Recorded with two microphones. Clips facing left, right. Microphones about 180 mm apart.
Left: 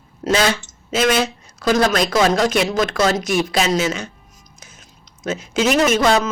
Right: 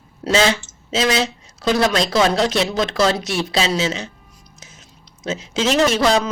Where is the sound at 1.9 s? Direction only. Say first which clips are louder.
Left 1 dB; 25° right (ahead or behind).